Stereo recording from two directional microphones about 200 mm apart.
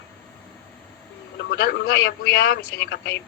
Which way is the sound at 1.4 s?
50° left (ahead or behind).